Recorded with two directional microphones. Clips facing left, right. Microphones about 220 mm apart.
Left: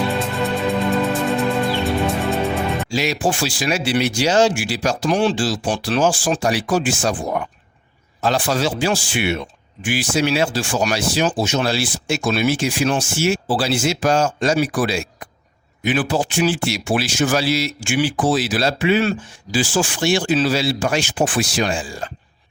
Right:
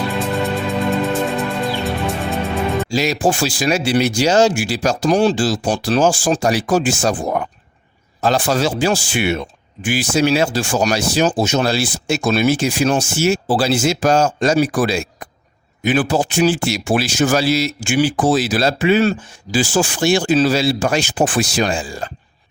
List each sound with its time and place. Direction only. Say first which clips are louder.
0.1 s music: right 1 dB; centre (ahead or behind)
2.9 s speech: right 3 dB; 40° right (ahead or behind)